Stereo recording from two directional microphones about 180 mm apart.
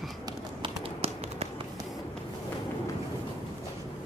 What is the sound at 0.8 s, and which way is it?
Tap, 35° right (ahead or behind).